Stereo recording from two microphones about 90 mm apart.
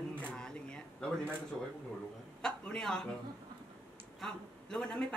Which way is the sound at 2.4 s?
5° left (ahead or behind).